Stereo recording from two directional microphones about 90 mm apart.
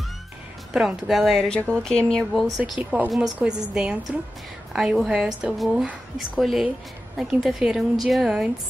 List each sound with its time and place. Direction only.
0.7 s speech: 5° right (ahead or behind)
2.8 s a woman's voice: 20° right (ahead or behind)